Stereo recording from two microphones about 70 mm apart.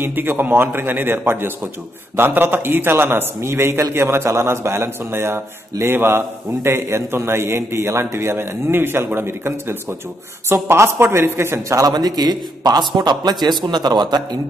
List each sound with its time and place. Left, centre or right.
0.0 s a man's voice: right
11.7 s a man's voice: right